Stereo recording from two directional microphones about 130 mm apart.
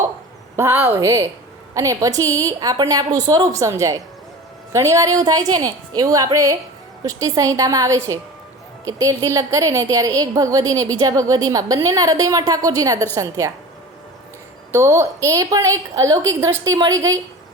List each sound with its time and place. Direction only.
0.5 s a woman's voice: 20° right (ahead or behind)
14.7 s a woman's voice: 20° right (ahead or behind)